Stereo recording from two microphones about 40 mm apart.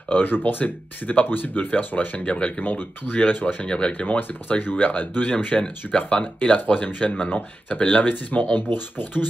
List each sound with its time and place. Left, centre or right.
0.1 s speech: left
2.2 s speech: left
2.6 s speech: left
3.6 s speech: left
4.2 s speech: left
5.9 s speech: left
6.6 s speech: left
8.5 s speech: left